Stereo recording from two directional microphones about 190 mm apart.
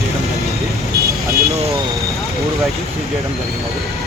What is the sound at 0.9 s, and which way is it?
Speech, 15° right (ahead or behind).